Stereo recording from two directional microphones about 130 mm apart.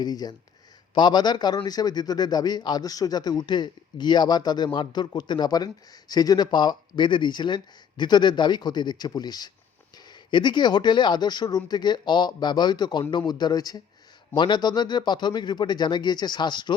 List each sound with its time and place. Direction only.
0.0 s a man's voice: 30° left (ahead or behind)